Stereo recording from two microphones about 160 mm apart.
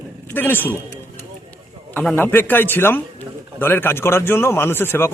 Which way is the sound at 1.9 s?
10° left (ahead or behind).